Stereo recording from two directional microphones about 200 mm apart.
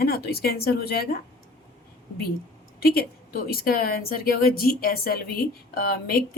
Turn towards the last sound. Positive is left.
turn(degrees=50)  # may be behind; listen again after turning